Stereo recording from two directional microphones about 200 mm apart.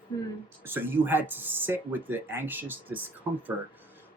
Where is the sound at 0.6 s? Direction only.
10° right (ahead or behind).